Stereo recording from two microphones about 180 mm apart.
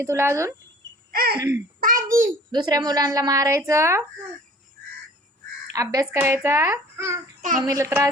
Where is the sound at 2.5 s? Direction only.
20° right (ahead or behind).